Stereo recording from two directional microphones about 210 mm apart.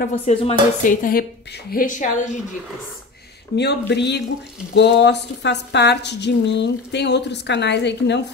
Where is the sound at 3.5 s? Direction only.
55° left (ahead or behind).